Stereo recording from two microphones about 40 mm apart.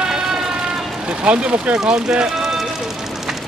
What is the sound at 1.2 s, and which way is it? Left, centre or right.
Speech, right.